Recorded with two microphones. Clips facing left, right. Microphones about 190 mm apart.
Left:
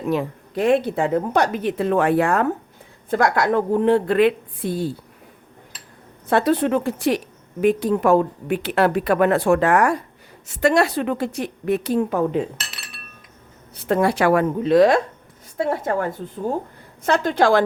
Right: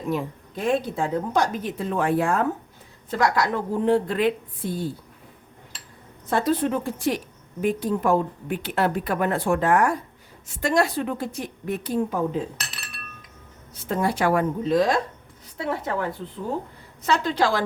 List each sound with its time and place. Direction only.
0.1 s speech: 70° left (ahead or behind)
3.1 s a woman's voice: 55° left (ahead or behind); by 4.9 s 70° left (ahead or behind)
6.2 s speech: 65° left (ahead or behind)
13.7 s speech: 70° left (ahead or behind)
15.5 s a woman's voice: 50° left (ahead or behind)